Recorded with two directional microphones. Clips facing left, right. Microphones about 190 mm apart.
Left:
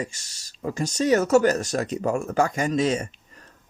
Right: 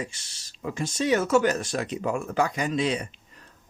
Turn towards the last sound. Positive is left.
turn(degrees=45)  # may be behind; listen again after turning